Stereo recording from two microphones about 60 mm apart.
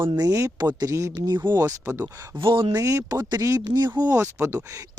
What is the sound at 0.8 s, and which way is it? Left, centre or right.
Speech, right.